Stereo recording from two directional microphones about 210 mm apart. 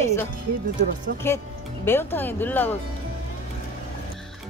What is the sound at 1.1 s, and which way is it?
Speech, 45° right (ahead or behind).